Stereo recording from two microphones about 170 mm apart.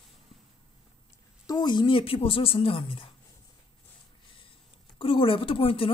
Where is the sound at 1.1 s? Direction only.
25° left (ahead or behind).